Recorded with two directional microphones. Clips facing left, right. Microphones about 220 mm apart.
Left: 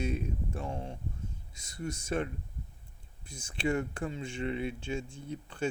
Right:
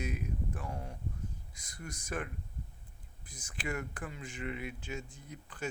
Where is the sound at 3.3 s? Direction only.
25° left (ahead or behind).